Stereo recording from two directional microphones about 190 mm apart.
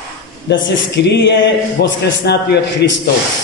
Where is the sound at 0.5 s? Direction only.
65° left (ahead or behind).